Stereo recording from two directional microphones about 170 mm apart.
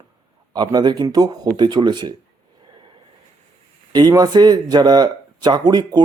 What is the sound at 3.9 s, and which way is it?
Speech, 25° right (ahead or behind).